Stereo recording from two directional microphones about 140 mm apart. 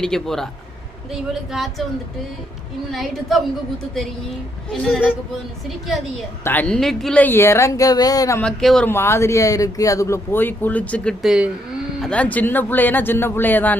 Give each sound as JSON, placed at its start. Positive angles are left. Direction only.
{"t": 0.0, "sound": "speech", "side_deg": 5}
{"t": 2.9, "sound": "speech", "side_deg": 0}
{"t": 4.7, "sound": "speech", "side_deg": 5}
{"t": 6.4, "sound": "speech", "side_deg": 10}
{"t": 8.4, "sound": "speech", "side_deg": 5}
{"t": 8.9, "sound": "speech", "side_deg": 20}
{"t": 11.2, "sound": "speech", "side_deg": -5}
{"t": 11.9, "sound": "speech", "side_deg": 5}